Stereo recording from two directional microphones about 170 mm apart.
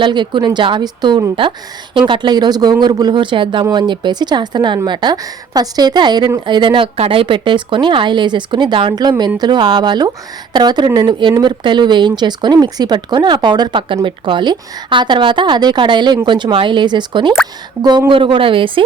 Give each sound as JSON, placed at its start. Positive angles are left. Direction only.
{"t": 0.0, "sound": "a woman's voice", "side_deg": -25}